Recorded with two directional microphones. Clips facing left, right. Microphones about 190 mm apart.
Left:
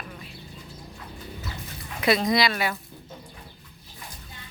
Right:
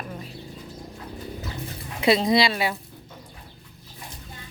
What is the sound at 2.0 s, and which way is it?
Speech, 25° right (ahead or behind).